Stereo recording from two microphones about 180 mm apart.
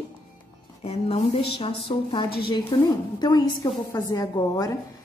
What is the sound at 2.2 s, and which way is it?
Speech, 60° left (ahead or behind).